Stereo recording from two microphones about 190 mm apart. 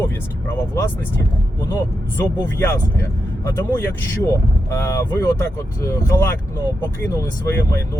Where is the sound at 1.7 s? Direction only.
10° left (ahead or behind).